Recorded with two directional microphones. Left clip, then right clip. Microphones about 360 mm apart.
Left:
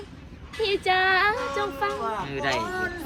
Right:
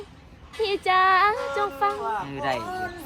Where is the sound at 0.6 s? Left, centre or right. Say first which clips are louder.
Right 2 dB; right.